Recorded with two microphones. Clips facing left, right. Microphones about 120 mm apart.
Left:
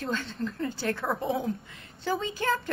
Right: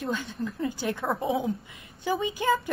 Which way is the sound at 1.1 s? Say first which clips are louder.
Right 3 dB; centre (ahead or behind).